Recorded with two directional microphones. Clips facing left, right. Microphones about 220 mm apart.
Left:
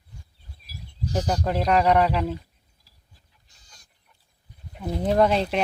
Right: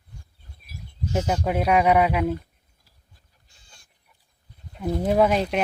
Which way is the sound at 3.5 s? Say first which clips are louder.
Right 1 dB; 40° left (ahead or behind).